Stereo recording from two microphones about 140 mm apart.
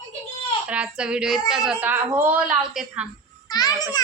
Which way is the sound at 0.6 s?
10° right (ahead or behind).